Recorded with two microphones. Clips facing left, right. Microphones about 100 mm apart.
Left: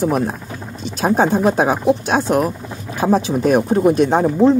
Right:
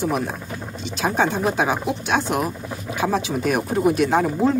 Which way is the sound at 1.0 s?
40° left (ahead or behind).